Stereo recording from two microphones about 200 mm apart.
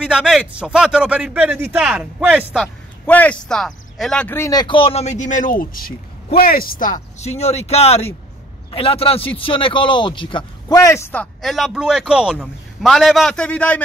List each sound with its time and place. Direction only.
0.0 s speech: 5° right (ahead or behind)
3.1 s a man's voice: 5° left (ahead or behind)